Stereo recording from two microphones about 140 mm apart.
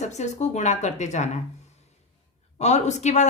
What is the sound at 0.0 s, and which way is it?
A woman's voice, 55° left (ahead or behind).